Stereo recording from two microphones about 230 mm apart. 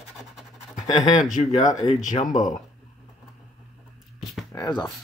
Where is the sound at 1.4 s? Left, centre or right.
Left.